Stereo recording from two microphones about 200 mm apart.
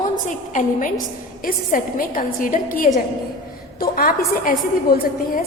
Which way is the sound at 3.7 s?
45° left (ahead or behind).